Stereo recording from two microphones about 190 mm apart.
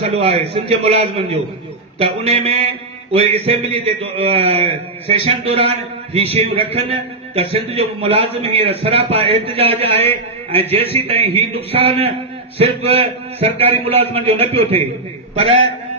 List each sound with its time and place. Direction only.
0.0 s a man's voice: 30° right (ahead or behind)